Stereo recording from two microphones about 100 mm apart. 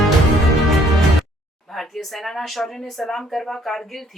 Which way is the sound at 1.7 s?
Centre (ahead or behind).